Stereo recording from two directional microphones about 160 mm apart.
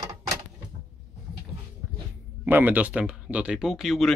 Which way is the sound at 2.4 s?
10° right (ahead or behind).